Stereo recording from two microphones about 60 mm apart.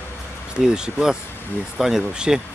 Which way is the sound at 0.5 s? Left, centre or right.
Centre.